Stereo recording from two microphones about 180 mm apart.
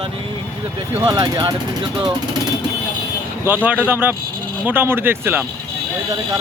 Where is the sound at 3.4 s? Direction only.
10° right (ahead or behind).